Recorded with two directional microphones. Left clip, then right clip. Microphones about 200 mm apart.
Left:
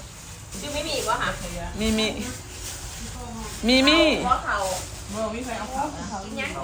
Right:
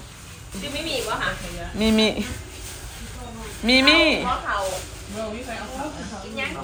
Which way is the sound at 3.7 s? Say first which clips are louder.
Right 2 dB; 15° left (ahead or behind).